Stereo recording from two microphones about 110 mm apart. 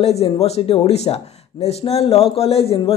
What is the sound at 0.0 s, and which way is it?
A man's voice, 70° left (ahead or behind).